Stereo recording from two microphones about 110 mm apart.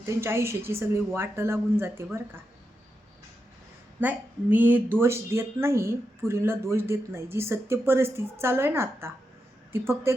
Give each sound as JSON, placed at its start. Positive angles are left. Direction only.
{"t": 0.0, "sound": "speech", "side_deg": -25}
{"t": 4.0, "sound": "speech", "side_deg": -15}